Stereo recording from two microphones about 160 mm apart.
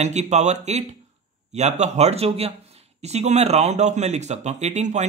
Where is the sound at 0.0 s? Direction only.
45° right (ahead or behind).